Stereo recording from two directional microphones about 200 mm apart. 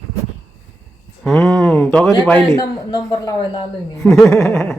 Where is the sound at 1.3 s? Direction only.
Centre (ahead or behind).